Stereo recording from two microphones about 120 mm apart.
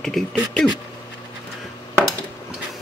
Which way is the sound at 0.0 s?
Centre (ahead or behind).